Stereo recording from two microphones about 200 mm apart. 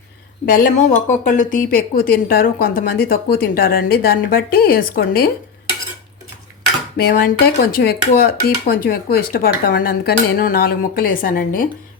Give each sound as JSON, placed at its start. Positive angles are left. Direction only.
{"t": 0.4, "sound": "speech", "side_deg": 45}
{"t": 6.9, "sound": "speech", "side_deg": 50}